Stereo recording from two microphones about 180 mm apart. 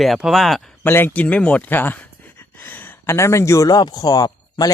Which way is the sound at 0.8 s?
10° left (ahead or behind).